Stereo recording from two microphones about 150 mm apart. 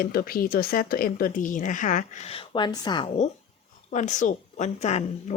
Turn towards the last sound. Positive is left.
turn(degrees=50)  # may be behind; listen again after turning